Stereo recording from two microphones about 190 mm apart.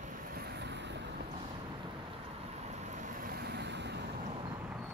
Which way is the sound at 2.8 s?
40° right (ahead or behind).